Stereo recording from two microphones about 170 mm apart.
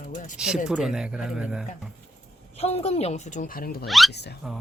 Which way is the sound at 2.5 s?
35° left (ahead or behind).